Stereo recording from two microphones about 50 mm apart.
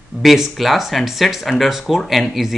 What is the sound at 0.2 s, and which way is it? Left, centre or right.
Speech, centre.